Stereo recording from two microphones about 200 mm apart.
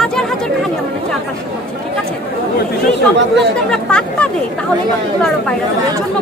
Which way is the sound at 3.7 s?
5° left (ahead or behind).